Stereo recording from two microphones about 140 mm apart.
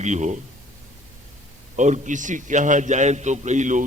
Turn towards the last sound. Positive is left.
turn(degrees=-60)  # may be behind; listen again after turning